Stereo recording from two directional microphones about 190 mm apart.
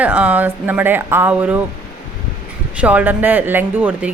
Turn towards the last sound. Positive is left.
turn(degrees=-10)  # may be behind; listen again after turning